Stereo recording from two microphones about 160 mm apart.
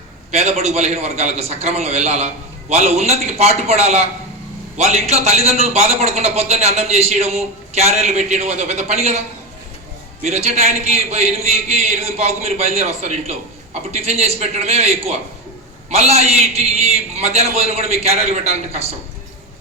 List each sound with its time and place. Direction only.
0.3 s a man's voice: 45° right (ahead or behind)
10.2 s a man's voice: 45° right (ahead or behind)